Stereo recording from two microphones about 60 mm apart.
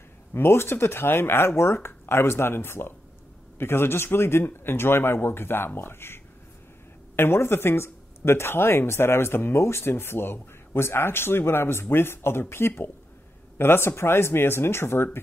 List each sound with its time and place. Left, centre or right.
0.3 s speech: left